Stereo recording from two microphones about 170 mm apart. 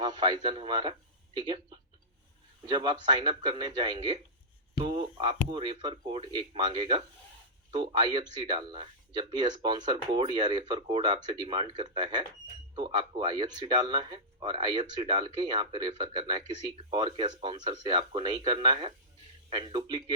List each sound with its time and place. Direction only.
0.0 s a man's voice: 25° right (ahead or behind)
4.8 s a sound: 30° right (ahead or behind)
5.5 s speech: 30° right (ahead or behind)